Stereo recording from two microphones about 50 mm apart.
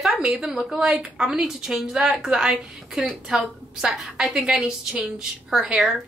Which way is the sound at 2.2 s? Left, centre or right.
Centre.